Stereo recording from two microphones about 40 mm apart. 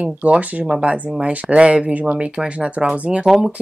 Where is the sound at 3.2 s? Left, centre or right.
Centre.